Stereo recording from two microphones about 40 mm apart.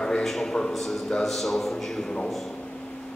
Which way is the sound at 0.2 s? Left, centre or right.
Centre.